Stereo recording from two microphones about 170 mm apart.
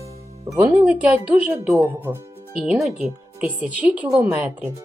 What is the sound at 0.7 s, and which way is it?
Speech, 5° right (ahead or behind).